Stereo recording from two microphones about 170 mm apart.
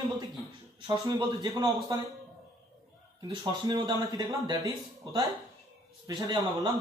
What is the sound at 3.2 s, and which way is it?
A man's voice, 25° right (ahead or behind).